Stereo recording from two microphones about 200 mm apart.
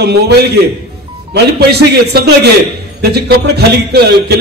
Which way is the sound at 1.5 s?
55° right (ahead or behind).